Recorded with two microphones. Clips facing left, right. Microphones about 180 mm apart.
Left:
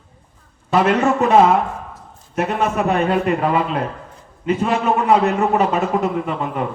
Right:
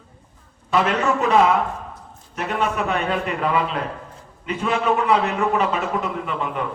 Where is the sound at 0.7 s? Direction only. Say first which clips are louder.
Left 4 dB; 45° left (ahead or behind).